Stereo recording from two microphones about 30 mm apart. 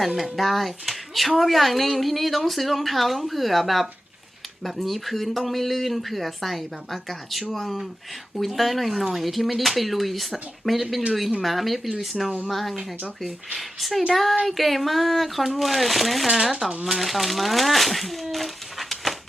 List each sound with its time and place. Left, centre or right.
0.3 s speech: centre
16.2 s speech: centre
16.5 s speech: centre